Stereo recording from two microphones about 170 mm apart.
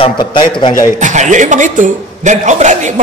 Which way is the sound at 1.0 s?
45° right (ahead or behind).